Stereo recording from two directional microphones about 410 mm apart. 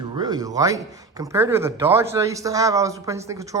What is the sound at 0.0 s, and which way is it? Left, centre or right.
Speech, centre.